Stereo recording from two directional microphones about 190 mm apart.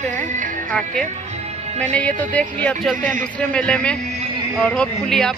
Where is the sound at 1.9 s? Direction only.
5° left (ahead or behind).